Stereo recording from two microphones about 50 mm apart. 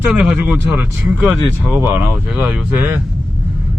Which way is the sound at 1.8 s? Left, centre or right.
Right.